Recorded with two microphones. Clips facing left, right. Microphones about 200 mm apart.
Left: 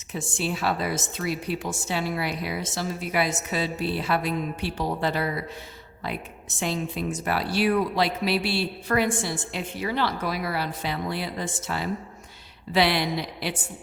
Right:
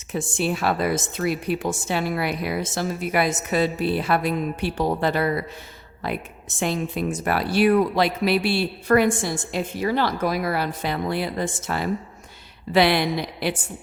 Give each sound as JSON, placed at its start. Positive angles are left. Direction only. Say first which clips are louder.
{"t": 0.1, "sound": "speech", "louder": "right 5 dB", "side_deg": -55}
{"t": 6.6, "sound": "speech", "louder": "right 4 dB", "side_deg": -55}